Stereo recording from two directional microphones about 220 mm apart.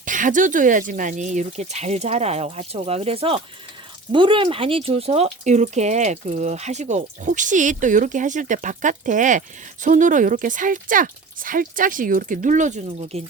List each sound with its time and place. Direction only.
0.0 s speech: 35° right (ahead or behind)